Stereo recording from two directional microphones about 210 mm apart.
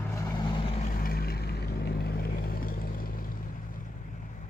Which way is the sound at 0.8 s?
40° left (ahead or behind).